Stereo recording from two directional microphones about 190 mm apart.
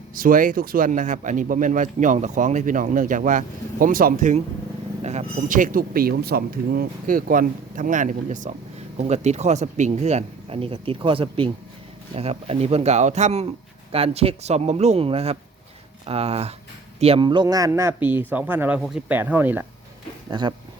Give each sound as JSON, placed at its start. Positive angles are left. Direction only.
{"t": 0.1, "sound": "a man's voice", "side_deg": -45}